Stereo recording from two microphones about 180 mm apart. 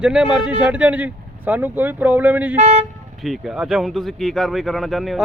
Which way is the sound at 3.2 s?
Centre (ahead or behind).